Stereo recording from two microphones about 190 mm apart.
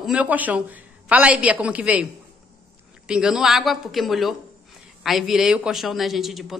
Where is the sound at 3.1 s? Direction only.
5° right (ahead or behind).